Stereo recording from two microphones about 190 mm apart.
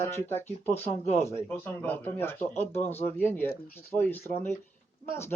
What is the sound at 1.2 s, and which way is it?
A man's voice, 15° left (ahead or behind).